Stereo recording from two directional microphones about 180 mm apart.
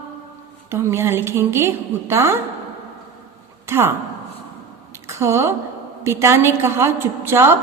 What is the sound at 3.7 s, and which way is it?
Speech, 15° right (ahead or behind).